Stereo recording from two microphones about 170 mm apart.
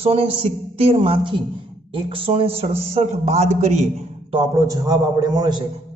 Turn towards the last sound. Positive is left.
turn(degrees=-25)  # may be behind; listen again after turning